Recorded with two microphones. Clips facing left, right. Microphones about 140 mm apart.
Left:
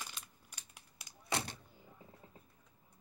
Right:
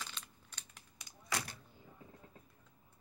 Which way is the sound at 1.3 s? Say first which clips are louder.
Left 3 dB; 25° left (ahead or behind).